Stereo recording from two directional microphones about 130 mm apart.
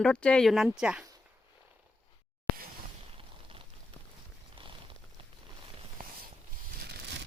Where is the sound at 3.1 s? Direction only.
40° right (ahead or behind).